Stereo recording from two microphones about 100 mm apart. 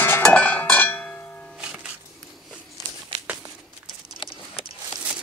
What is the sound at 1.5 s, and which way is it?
Music, 10° right (ahead or behind).